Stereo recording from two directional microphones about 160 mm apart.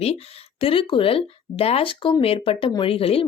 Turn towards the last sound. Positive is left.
turn(degrees=35)  # may be behind; listen again after turning